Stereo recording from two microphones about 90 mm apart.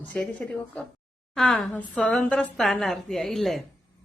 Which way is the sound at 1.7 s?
15° left (ahead or behind).